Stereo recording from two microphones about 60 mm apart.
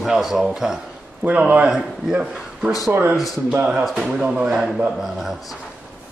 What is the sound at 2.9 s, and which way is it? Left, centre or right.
Speech, right.